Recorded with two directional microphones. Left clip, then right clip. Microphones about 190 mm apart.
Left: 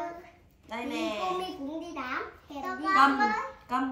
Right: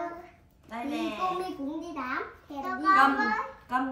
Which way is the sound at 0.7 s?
20° left (ahead or behind).